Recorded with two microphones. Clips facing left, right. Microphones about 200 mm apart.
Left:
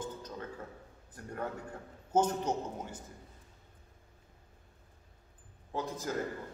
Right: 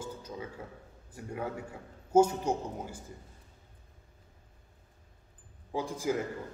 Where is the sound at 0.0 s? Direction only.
10° right (ahead or behind).